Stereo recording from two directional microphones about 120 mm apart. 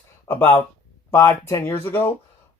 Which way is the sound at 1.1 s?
25° left (ahead or behind).